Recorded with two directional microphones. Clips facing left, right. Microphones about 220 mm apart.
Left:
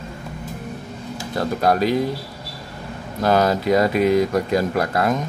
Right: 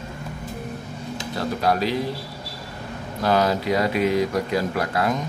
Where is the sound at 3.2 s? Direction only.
45° left (ahead or behind).